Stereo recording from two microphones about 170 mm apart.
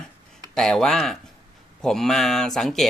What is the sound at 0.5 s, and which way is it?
Speech, 5° left (ahead or behind).